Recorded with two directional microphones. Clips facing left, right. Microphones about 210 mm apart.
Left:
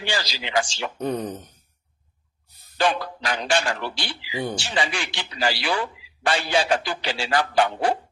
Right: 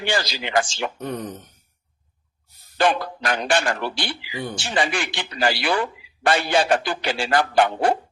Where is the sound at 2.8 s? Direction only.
50° right (ahead or behind).